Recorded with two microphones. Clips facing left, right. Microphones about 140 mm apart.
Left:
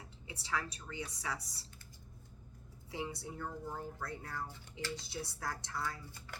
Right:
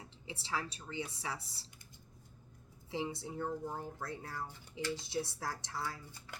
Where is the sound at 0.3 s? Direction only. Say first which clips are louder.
Even; 25° right (ahead or behind).